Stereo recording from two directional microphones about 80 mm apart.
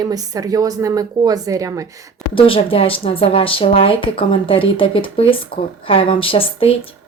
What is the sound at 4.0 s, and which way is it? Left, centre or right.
Speech, left.